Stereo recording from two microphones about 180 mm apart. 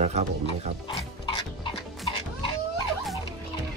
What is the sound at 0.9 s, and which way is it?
Stir, 25° left (ahead or behind).